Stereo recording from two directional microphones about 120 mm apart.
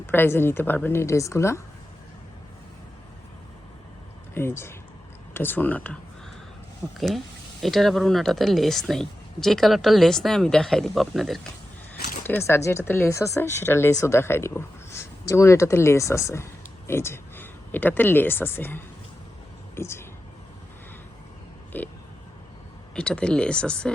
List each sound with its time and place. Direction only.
0.0 s speech: 20° left (ahead or behind)
4.4 s speech: 20° left (ahead or behind)
7.6 s speech: centre (ahead or behind)
12.2 s speech: 20° left (ahead or behind)
21.7 s oink: 15° left (ahead or behind)
23.0 s speech: 10° left (ahead or behind)